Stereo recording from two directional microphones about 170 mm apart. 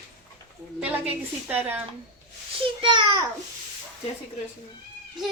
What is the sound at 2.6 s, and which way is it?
Speech, 30° right (ahead or behind).